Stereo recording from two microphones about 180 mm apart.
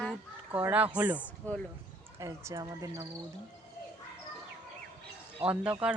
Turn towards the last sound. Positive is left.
turn(degrees=-5)  # may be behind; listen again after turning